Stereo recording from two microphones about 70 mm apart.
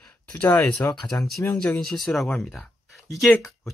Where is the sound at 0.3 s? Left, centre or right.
Centre.